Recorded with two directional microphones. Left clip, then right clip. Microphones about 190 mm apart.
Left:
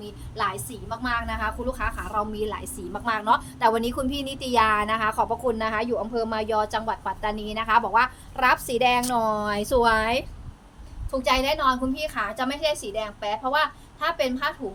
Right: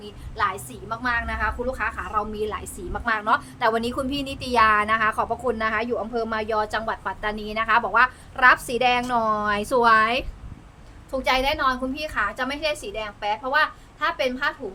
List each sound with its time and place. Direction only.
0.0 s a woman's voice: 15° right (ahead or behind)